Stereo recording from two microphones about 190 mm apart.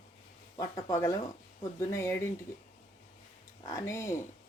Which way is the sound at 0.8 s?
20° left (ahead or behind).